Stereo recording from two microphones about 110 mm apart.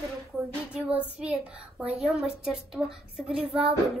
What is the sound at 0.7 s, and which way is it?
A woman's voice, 10° right (ahead or behind).